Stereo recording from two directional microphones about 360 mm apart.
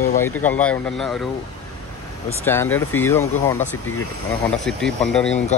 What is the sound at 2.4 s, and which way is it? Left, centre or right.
Speech, centre.